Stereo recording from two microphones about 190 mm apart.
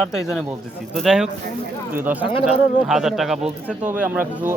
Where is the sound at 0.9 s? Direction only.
Centre (ahead or behind).